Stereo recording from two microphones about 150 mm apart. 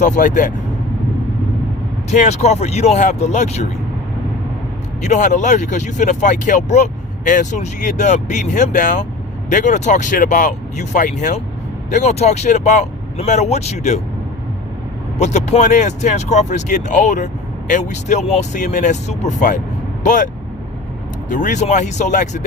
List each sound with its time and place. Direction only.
0.0 s speech: 60° left (ahead or behind)
2.0 s speech: 50° left (ahead or behind)
5.0 s speech: 55° left (ahead or behind)
15.2 s speech: 50° left (ahead or behind)